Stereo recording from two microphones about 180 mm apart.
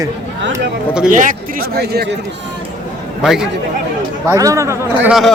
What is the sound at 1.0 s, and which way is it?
Speech, 45° right (ahead or behind).